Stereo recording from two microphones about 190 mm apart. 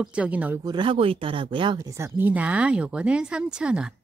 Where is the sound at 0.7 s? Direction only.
25° right (ahead or behind).